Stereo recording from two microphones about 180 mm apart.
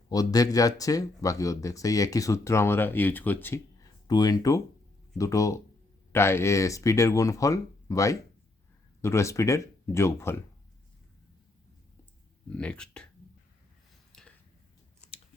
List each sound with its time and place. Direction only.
0.1 s speech: 20° left (ahead or behind)
12.5 s speech: 5° left (ahead or behind)
14.1 s a sound: 5° left (ahead or behind)